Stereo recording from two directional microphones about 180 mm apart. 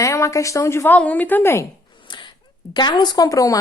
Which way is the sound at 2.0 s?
25° left (ahead or behind).